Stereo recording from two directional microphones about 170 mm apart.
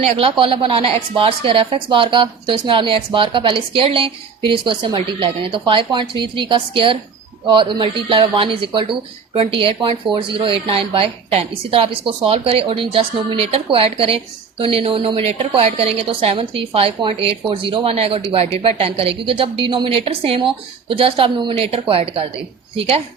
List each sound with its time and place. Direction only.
0.0 s a woman's voice: 35° right (ahead or behind)